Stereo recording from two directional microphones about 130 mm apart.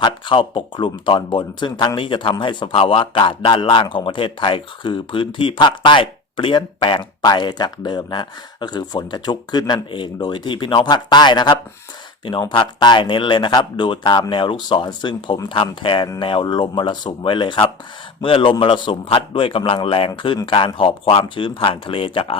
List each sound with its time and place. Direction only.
0.0 s a man's voice: 40° left (ahead or behind)